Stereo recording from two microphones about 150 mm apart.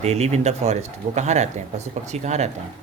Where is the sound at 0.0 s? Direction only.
45° right (ahead or behind).